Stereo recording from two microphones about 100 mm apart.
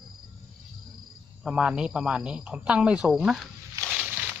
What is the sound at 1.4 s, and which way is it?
Speech, 10° right (ahead or behind).